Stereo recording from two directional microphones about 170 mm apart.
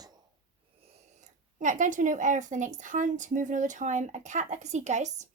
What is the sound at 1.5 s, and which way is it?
A woman's voice, 45° right (ahead or behind).